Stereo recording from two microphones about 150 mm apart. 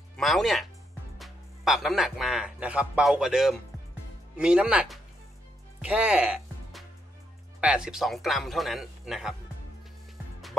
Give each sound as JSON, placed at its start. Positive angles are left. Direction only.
{"t": 0.2, "sound": "a man's voice", "side_deg": 0}